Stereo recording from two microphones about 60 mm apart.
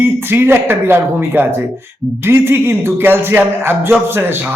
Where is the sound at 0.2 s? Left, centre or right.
Right.